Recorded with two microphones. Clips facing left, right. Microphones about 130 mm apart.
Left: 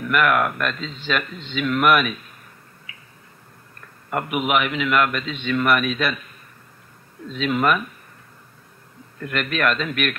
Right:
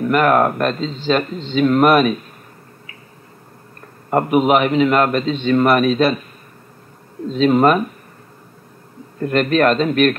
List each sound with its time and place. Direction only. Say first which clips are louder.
0.0 s a man's voice: right 6 dB; 35° right (ahead or behind)
3.8 s a man's voice: right 8 dB; 35° right (ahead or behind)
7.2 s a man's voice: right 8 dB; 35° right (ahead or behind)
9.2 s a man's voice: right 8 dB; 35° right (ahead or behind)